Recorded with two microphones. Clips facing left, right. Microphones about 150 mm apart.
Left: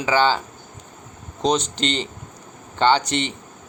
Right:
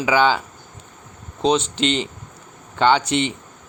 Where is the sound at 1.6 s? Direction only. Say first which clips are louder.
Right 3 dB; 35° left (ahead or behind).